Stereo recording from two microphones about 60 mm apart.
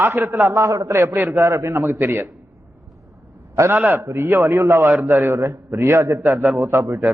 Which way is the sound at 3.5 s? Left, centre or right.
Right.